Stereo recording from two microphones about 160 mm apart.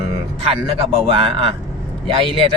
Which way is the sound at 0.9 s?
35° right (ahead or behind).